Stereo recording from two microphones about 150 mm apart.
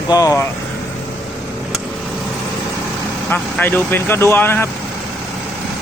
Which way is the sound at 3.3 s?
10° left (ahead or behind).